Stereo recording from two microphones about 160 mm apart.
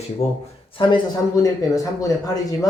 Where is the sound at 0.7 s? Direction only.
25° left (ahead or behind).